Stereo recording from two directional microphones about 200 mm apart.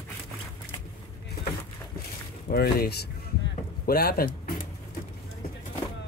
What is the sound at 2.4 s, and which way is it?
Speech, 50° left (ahead or behind).